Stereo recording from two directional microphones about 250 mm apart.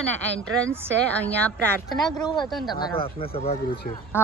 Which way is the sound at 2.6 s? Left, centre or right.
Centre.